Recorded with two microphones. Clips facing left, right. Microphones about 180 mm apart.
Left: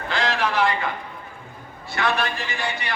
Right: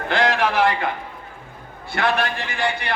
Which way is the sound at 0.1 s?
55° right (ahead or behind).